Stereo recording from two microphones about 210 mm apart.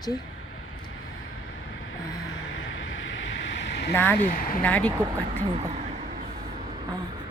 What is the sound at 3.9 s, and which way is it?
Speech, 10° left (ahead or behind).